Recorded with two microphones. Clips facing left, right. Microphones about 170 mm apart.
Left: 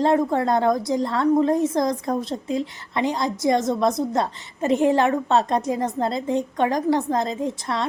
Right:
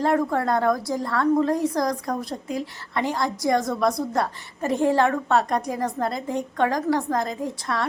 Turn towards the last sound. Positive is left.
turn(degrees=20)  # may be behind; listen again after turning